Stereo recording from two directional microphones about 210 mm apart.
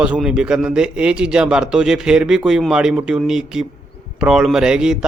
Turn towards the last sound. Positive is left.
turn(degrees=-5)  # may be behind; listen again after turning